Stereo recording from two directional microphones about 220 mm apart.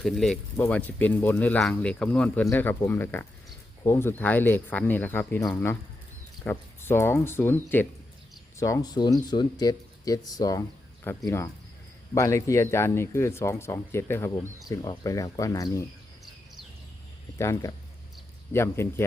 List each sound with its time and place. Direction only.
0.0 s speech: centre (ahead or behind)
17.3 s speech: 15° left (ahead or behind)